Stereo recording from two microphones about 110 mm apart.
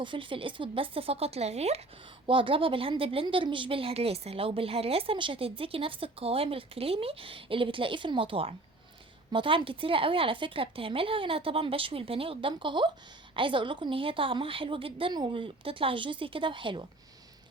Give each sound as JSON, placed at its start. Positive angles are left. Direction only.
{"t": 0.0, "sound": "a woman's voice", "side_deg": -50}
{"t": 2.2, "sound": "a woman's voice", "side_deg": -50}